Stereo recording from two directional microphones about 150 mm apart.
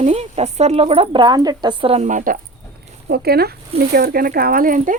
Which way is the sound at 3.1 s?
90° right.